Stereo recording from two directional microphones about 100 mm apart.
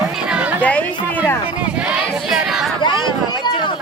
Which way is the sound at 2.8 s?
50° left (ahead or behind).